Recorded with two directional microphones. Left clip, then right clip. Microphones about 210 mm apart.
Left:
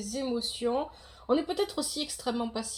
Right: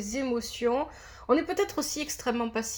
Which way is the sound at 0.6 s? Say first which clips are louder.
Right 5 dB; 35° right (ahead or behind).